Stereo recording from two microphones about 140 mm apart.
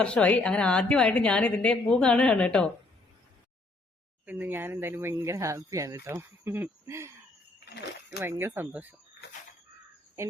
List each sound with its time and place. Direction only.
0.0 s a woman's voice: 10° left (ahead or behind)
4.3 s speech: 10° right (ahead or behind)
8.2 s speech: 15° right (ahead or behind)